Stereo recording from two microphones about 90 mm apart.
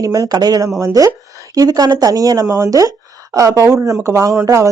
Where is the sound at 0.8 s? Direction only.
40° right (ahead or behind).